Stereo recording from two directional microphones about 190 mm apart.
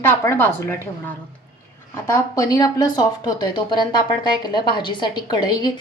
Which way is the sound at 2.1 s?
20° left (ahead or behind).